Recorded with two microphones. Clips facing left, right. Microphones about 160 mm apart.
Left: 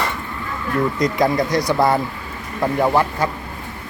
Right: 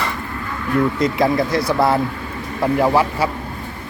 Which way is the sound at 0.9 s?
Centre (ahead or behind).